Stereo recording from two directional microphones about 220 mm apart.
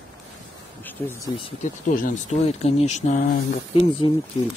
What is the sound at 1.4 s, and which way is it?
Speech, 25° left (ahead or behind).